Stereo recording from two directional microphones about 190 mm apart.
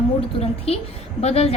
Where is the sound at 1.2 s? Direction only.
35° left (ahead or behind).